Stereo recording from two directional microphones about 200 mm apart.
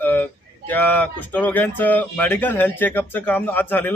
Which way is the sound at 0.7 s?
10° left (ahead or behind).